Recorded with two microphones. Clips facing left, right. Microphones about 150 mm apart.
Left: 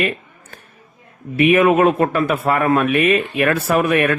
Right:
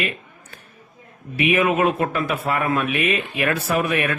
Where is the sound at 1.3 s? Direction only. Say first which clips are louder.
Left 6 dB; 50° left (ahead or behind).